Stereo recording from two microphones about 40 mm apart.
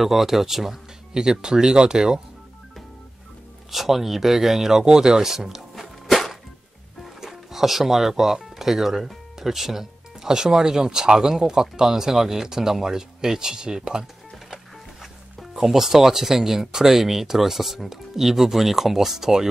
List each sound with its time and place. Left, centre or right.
0.0 s speech: centre
1.1 s speech: centre
3.7 s speech: centre
4.8 s a sound: centre
7.2 s speech: centre
15.5 s speech: centre